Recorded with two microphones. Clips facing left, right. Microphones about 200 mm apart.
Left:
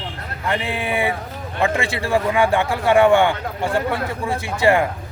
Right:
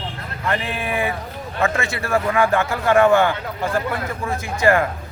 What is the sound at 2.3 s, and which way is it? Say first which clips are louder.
Speech: left 1 dB; 15° left (ahead or behind).